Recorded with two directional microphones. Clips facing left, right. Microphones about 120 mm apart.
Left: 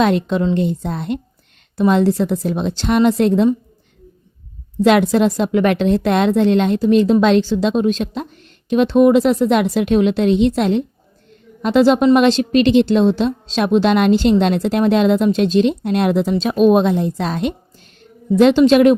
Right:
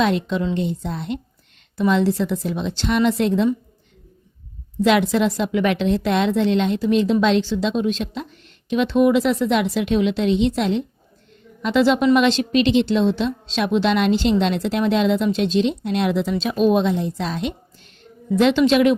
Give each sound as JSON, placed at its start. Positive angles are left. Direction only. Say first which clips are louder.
{"t": 0.0, "sound": "a woman's voice", "louder": "left 4 dB", "side_deg": 50}
{"t": 4.8, "sound": "a woman's voice", "louder": "left 4 dB", "side_deg": 45}